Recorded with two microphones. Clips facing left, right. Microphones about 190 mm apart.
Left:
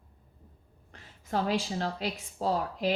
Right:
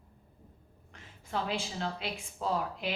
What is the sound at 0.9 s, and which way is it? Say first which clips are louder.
A woman's voice: left 4 dB; 40° left (ahead or behind).